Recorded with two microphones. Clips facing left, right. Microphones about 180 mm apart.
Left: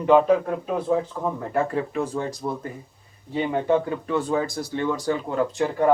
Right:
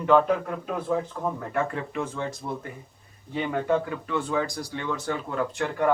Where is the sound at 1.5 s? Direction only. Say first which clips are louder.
Left 6 dB; 35° left (ahead or behind).